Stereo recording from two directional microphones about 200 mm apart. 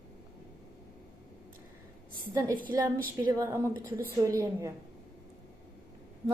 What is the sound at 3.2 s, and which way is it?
A woman's voice, 15° right (ahead or behind).